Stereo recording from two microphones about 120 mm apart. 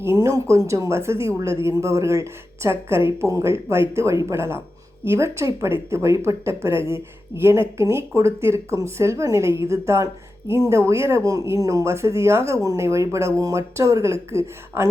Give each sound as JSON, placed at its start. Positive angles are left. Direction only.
{"t": 0.0, "sound": "speech", "side_deg": -25}